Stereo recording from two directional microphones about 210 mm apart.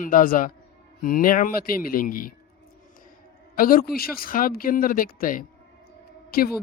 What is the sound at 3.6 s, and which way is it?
Speech, 45° left (ahead or behind).